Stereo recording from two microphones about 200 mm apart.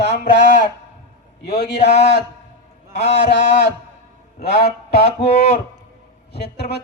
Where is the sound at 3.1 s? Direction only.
55° left (ahead or behind).